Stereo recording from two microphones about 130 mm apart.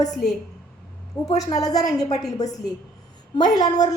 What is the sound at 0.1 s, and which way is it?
Speech, centre (ahead or behind).